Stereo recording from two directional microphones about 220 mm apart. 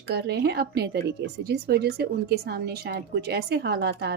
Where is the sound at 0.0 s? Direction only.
50° right (ahead or behind).